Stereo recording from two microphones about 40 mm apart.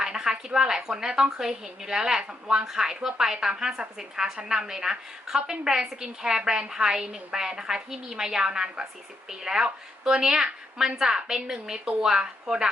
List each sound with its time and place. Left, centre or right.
0.0 s a woman's voice: centre